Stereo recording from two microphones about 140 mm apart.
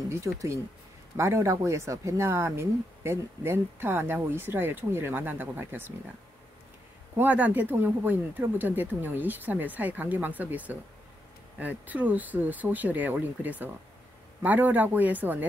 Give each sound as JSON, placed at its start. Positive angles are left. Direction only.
{"t": 0.1, "sound": "speech", "side_deg": -20}
{"t": 7.2, "sound": "speech", "side_deg": -10}